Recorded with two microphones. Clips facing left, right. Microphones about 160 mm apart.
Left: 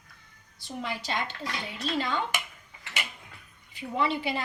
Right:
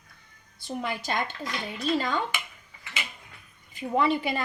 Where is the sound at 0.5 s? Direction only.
50° right (ahead or behind).